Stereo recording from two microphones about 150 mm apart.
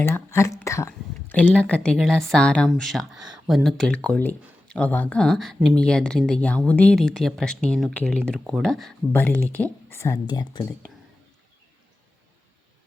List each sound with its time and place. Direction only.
0.0 s speech: 15° left (ahead or behind)
9.1 s speech: 10° left (ahead or behind)